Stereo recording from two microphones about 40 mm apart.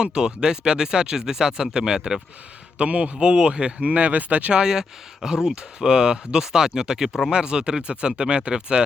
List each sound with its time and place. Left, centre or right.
0.0 s speech: right
2.7 s speech: right
4.5 s speech: centre